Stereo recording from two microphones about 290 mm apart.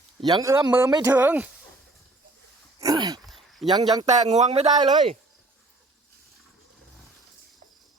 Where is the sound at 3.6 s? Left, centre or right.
Centre.